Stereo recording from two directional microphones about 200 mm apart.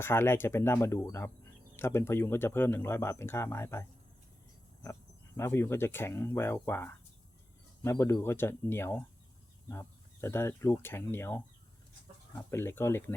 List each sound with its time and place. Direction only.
0.0 s speech: 10° left (ahead or behind)
5.4 s speech: 15° left (ahead or behind)